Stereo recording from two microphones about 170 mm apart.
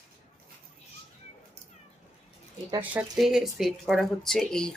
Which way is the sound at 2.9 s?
5° right (ahead or behind).